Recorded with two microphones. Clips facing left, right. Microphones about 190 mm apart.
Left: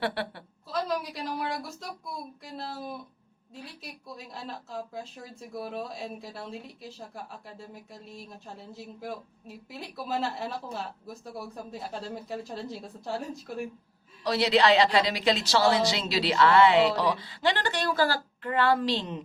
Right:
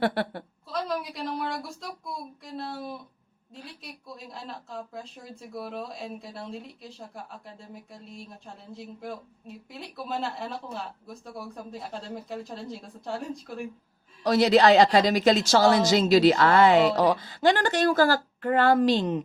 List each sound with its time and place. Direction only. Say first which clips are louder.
0.0 s a woman's voice: right 5 dB; 45° right (ahead or behind)
0.7 s a woman's voice: even; centre (ahead or behind)
14.3 s speech: right 4 dB; 45° right (ahead or behind)